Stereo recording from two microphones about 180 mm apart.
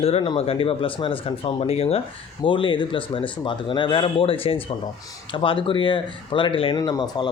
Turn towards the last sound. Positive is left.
turn(degrees=20)  # may be behind; listen again after turning